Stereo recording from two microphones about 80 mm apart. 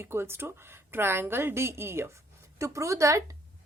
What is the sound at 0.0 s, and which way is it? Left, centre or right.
A woman's voice, right.